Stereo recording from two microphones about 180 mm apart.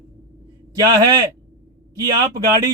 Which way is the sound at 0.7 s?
20° right (ahead or behind).